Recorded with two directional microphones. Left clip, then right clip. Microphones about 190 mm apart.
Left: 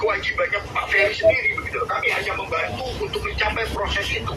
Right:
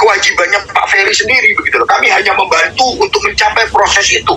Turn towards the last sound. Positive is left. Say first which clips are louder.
# right 15 dB
turn(degrees=-50)  # may be behind; listen again after turning